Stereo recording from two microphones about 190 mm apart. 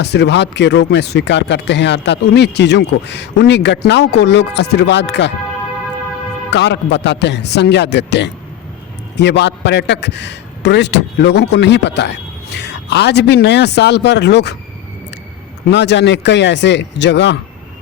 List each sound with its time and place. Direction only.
0.0 s a man's voice: 60° left (ahead or behind)
6.5 s a man's voice: 65° left (ahead or behind)
15.7 s speech: 65° left (ahead or behind)